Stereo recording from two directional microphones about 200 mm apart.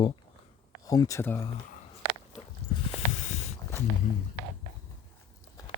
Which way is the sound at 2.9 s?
35° left (ahead or behind).